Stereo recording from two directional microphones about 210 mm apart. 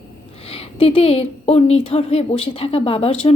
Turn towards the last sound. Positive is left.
turn(degrees=30)  # may be behind; listen again after turning